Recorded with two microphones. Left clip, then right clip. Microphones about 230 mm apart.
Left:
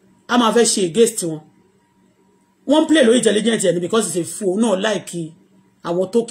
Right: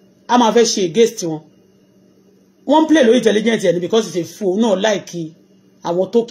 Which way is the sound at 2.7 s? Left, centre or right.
Centre.